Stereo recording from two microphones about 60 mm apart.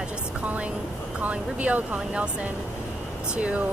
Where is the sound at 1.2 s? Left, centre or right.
Right.